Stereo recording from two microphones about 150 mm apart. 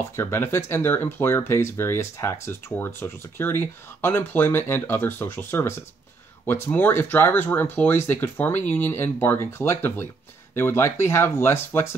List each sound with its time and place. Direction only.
0.1 s speech: 15° left (ahead or behind)